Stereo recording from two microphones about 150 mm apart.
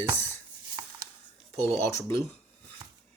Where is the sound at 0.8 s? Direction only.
25° right (ahead or behind).